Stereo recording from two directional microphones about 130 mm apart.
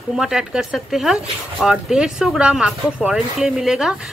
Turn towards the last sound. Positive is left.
turn(degrees=-5)  # may be behind; listen again after turning